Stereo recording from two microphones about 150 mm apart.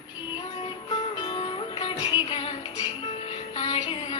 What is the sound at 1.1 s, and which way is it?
Music, 35° left (ahead or behind).